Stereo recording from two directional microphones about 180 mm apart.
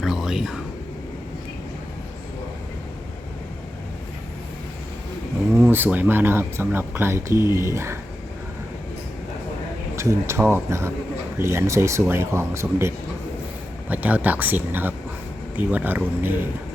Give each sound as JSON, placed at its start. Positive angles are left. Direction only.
{"t": 0.0, "sound": "a sound", "side_deg": 0}
{"t": 5.5, "sound": "speech", "side_deg": -10}
{"t": 9.9, "sound": "speech", "side_deg": -15}
{"t": 13.9, "sound": "speech", "side_deg": -10}